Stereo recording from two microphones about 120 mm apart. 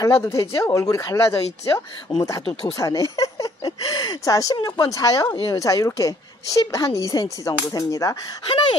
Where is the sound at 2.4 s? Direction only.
50° left (ahead or behind).